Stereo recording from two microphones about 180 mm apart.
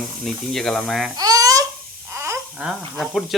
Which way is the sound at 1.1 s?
20° right (ahead or behind).